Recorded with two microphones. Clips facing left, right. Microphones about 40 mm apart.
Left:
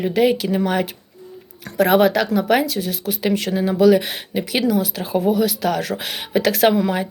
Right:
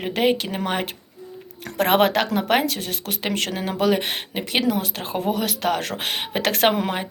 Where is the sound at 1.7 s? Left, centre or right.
Right.